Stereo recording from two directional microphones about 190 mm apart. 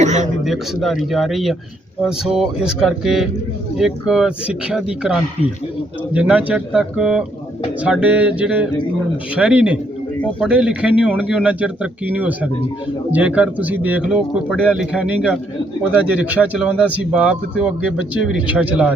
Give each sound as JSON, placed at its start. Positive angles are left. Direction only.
{"t": 0.0, "sound": "a man's voice", "side_deg": -40}
{"t": 0.4, "sound": "speech", "side_deg": 0}